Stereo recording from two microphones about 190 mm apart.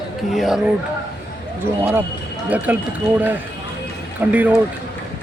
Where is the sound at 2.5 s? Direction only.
10° right (ahead or behind).